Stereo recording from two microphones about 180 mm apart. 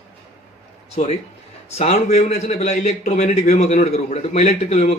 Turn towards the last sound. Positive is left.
turn(degrees=35)  # may be behind; listen again after turning